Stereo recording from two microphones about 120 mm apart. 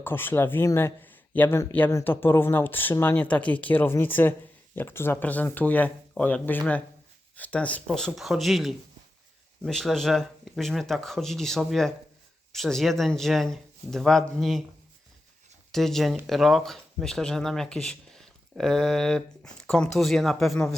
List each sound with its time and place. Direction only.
0.0 s speech: 15° left (ahead or behind)
15.7 s speech: centre (ahead or behind)